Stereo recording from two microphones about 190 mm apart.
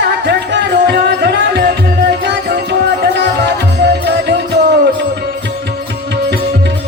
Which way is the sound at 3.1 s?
60° right (ahead or behind).